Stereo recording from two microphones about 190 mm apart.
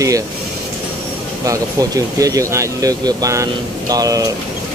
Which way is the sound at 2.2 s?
15° right (ahead or behind).